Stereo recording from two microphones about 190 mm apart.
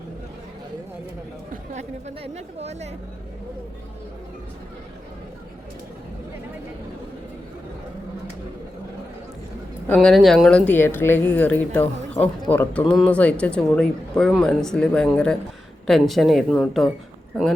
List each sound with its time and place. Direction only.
1.7 s a woman's voice: 35° right (ahead or behind)
9.8 s a woman's voice: 5° left (ahead or behind)